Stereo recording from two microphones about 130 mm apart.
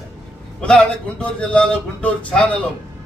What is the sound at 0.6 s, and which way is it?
A man's voice, 10° left (ahead or behind).